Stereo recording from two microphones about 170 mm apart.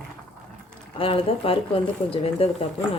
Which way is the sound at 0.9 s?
35° left (ahead or behind).